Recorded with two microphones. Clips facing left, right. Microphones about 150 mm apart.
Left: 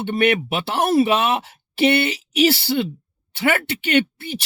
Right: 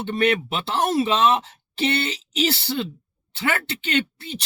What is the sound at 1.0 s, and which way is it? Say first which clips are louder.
Speech: even; 65° left (ahead or behind).